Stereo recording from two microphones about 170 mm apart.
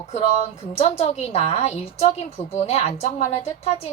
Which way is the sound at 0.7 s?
35° left (ahead or behind).